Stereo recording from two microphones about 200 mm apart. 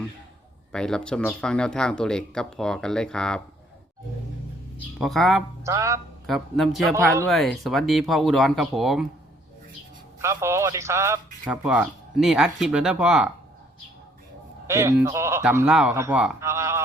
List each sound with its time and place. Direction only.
0.7 s speech: 5° left (ahead or behind)
4.9 s speech: centre (ahead or behind)
5.6 s a man's voice: 15° right (ahead or behind)
6.2 s speech: centre (ahead or behind)
6.9 s a man's voice: 15° right (ahead or behind)
7.3 s speech: centre (ahead or behind)
10.2 s a man's voice: 15° right (ahead or behind)
14.7 s a man's voice: 15° right (ahead or behind)
15.4 s a man's voice: 5° right (ahead or behind)